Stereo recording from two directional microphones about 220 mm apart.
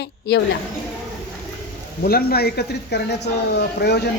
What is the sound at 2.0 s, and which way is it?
Speech, 45° left (ahead or behind).